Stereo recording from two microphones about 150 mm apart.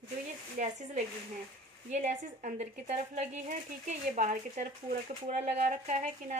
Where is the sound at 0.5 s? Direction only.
50° right (ahead or behind).